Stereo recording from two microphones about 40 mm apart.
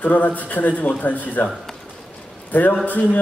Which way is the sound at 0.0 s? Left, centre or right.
Left.